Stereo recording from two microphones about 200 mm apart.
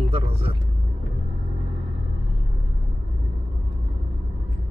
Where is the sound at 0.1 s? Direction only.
30° right (ahead or behind).